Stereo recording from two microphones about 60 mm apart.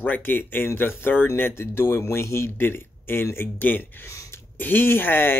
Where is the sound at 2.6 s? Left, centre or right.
Left.